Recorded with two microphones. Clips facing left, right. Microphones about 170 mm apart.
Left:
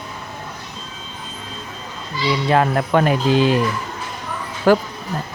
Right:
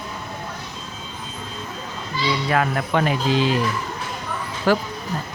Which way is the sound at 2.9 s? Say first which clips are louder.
Left 4 dB; 45° left (ahead or behind).